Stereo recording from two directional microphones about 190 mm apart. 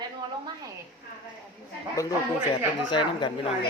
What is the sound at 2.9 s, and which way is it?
Speech, 25° left (ahead or behind).